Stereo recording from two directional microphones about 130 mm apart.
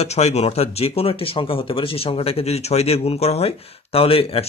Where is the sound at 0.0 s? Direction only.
55° left (ahead or behind).